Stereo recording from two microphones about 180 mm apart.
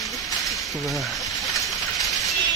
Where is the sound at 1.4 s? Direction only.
Centre (ahead or behind).